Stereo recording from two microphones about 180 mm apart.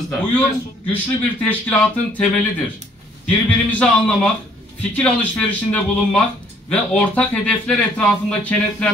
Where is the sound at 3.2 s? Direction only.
5° left (ahead or behind).